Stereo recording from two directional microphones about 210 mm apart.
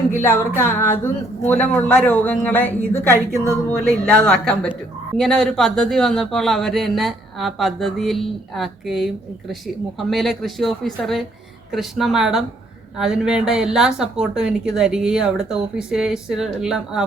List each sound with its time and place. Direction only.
0.2 s speech: 10° left (ahead or behind)